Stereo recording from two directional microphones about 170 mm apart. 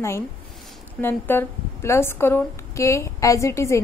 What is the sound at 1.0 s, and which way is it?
A woman's voice, 15° left (ahead or behind).